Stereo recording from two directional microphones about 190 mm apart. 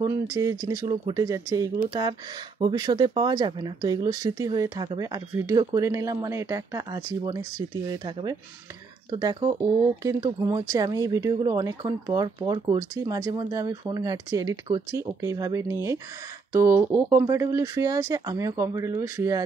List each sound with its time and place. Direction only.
0.0 s speech: 15° right (ahead or behind)